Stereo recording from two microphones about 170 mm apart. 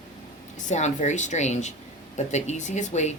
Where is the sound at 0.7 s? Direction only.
45° left (ahead or behind).